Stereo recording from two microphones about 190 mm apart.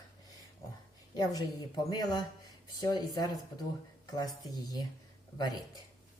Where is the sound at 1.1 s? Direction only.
20° left (ahead or behind).